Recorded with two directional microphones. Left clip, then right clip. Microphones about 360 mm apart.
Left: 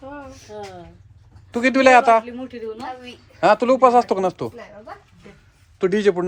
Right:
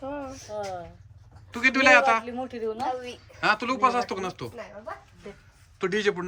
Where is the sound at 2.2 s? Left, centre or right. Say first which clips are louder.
Even; right.